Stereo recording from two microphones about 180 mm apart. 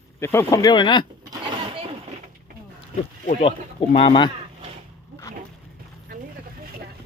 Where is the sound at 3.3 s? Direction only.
40° left (ahead or behind).